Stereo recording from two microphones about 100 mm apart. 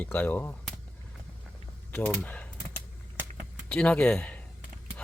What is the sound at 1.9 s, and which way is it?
Speech, 15° left (ahead or behind).